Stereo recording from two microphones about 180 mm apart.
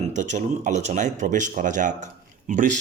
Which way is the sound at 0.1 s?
40° right (ahead or behind).